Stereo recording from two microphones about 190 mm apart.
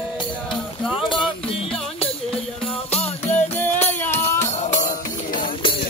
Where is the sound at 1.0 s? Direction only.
25° left (ahead or behind).